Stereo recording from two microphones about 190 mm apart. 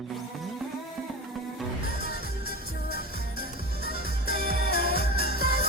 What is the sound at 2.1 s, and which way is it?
Music, 55° left (ahead or behind).